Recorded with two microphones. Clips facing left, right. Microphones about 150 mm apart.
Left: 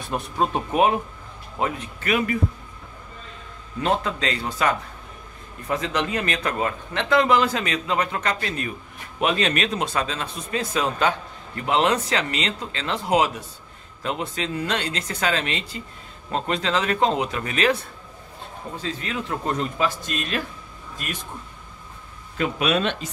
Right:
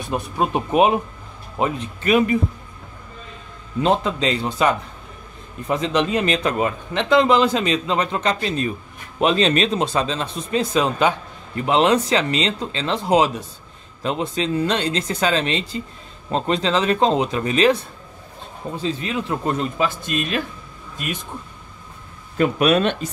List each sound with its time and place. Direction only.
0.1 s speech: 15° right (ahead or behind)
3.8 s speech: 20° right (ahead or behind)
18.8 s speech: 25° right (ahead or behind)
22.4 s speech: 50° right (ahead or behind)